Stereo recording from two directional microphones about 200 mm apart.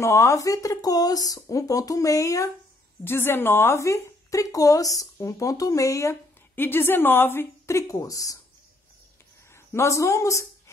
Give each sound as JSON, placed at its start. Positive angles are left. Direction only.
{"t": 0.0, "sound": "a woman's voice", "side_deg": 15}
{"t": 9.7, "sound": "a woman's voice", "side_deg": 15}